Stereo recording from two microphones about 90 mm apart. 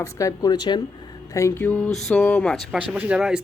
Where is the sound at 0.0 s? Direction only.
40° left (ahead or behind).